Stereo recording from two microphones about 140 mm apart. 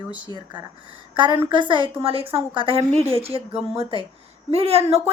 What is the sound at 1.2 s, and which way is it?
A woman's voice, 35° right (ahead or behind).